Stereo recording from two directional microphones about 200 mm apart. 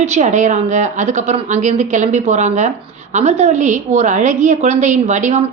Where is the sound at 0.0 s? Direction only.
35° right (ahead or behind).